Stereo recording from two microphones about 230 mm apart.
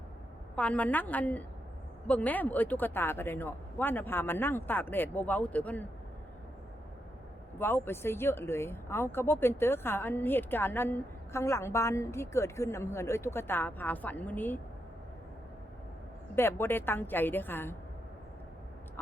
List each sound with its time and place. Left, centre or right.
0.5 s speech: centre
7.6 s speech: centre
16.3 s speech: centre